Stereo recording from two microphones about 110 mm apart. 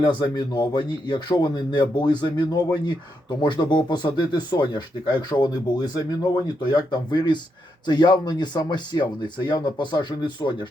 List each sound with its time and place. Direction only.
0.0 s speech: 45° left (ahead or behind)